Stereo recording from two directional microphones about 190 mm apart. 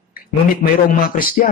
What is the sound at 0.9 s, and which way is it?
Speech, 45° left (ahead or behind).